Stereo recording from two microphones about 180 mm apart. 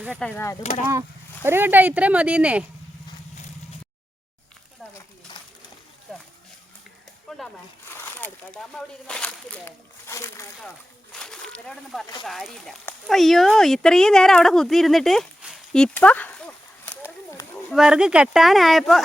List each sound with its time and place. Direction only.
0.0 s speech: 5° right (ahead or behind)
0.3 s speech: 10° left (ahead or behind)
1.5 s speech: 10° right (ahead or behind)
5.3 s a sound: 25° left (ahead or behind)
7.3 s a sound: centre (ahead or behind)
7.9 s speech: 10° left (ahead or behind)
11.1 s a sound: 5° left (ahead or behind)
12.2 s speech: centre (ahead or behind)
17.7 s speech: 5° right (ahead or behind)